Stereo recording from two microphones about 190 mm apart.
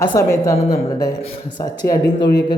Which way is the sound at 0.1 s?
15° left (ahead or behind).